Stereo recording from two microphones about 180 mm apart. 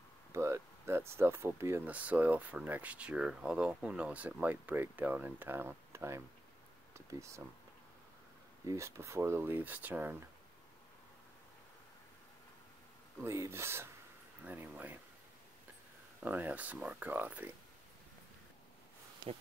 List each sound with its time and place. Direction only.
0.3 s speech: 15° right (ahead or behind)
8.6 s speech: 15° right (ahead or behind)
13.2 s speech: 15° right (ahead or behind)
16.2 s speech: 10° right (ahead or behind)